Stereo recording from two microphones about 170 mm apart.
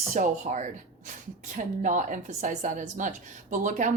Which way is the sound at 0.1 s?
45° right (ahead or behind).